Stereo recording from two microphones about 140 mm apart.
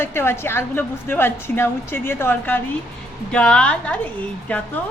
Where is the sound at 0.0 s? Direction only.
15° left (ahead or behind).